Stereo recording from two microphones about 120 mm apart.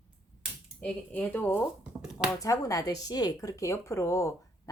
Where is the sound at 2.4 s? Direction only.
30° left (ahead or behind).